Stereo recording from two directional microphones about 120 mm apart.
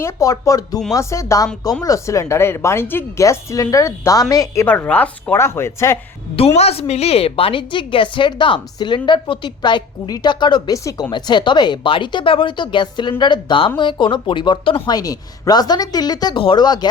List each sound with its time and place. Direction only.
0.0 s a woman's voice: 30° left (ahead or behind)
4.6 s a woman's voice: 15° left (ahead or behind)
6.3 s a woman's voice: 60° left (ahead or behind)
14.9 s speech: 30° left (ahead or behind)